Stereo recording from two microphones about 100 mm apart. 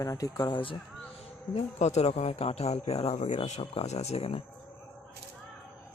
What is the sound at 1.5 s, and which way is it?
Speech, 90° left.